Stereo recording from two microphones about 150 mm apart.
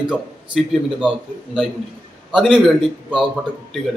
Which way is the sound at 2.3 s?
5° right (ahead or behind).